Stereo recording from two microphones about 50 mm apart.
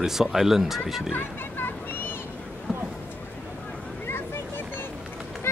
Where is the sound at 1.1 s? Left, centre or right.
Left.